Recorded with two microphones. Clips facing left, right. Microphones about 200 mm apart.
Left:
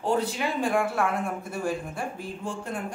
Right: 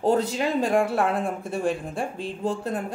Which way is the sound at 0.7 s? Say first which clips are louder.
Right 1 dB; 30° right (ahead or behind).